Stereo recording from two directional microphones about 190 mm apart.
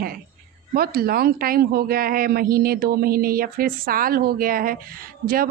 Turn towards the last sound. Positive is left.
turn(degrees=-50)  # may be behind; listen again after turning